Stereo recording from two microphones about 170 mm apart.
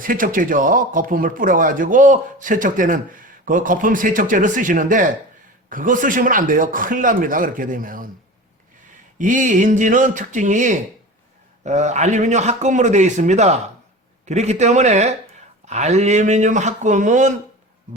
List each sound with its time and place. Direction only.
0.0 s speech: 55° right (ahead or behind)
9.1 s speech: 50° right (ahead or behind)